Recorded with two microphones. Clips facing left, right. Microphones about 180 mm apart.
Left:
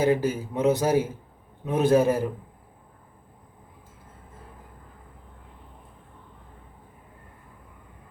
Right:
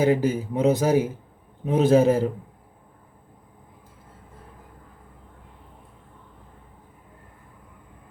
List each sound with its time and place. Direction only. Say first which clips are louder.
0.0 s a man's voice: right 2 dB; 15° right (ahead or behind)